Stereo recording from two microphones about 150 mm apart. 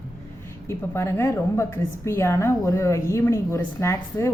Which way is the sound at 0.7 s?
15° left (ahead or behind).